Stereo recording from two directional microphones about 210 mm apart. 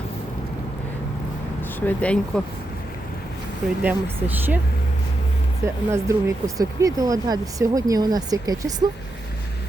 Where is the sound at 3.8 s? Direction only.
10° right (ahead or behind).